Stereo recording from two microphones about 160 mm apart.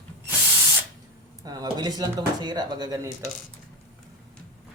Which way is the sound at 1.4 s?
25° right (ahead or behind).